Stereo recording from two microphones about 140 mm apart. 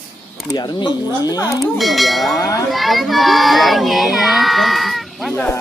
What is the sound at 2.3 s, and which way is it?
Speech, 25° left (ahead or behind).